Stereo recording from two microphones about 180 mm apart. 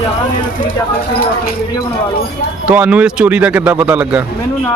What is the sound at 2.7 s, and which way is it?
A man's voice, 10° right (ahead or behind).